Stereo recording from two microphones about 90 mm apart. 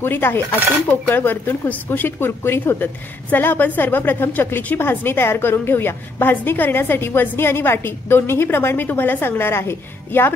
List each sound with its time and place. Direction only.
0.0 s speech: 25° left (ahead or behind)